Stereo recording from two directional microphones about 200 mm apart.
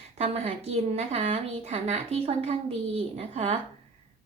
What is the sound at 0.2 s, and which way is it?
A woman's voice, 30° right (ahead or behind).